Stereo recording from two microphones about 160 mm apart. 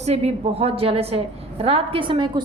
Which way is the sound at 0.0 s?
40° right (ahead or behind).